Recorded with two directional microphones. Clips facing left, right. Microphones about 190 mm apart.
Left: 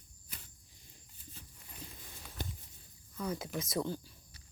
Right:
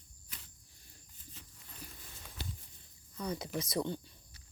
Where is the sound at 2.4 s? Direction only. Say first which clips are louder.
Left 3 dB; 50° left (ahead or behind).